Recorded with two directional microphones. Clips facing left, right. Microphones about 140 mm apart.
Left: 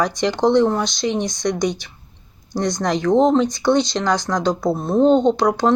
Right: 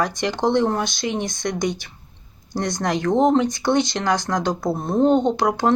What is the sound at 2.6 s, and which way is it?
Speech, 50° right (ahead or behind).